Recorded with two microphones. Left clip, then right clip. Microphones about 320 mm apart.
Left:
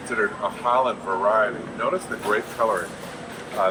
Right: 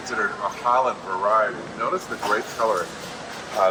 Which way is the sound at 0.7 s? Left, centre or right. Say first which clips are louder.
Even; centre.